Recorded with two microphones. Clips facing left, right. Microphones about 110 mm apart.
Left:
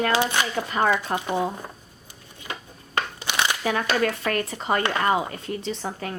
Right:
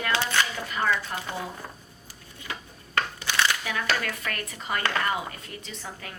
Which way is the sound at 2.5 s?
20° left (ahead or behind).